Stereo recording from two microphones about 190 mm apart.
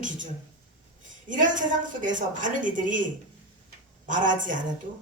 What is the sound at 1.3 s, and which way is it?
A woman's voice, 45° right (ahead or behind).